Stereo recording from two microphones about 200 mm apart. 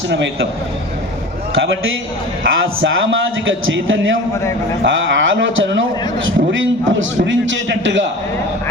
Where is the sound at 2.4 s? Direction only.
65° right (ahead or behind).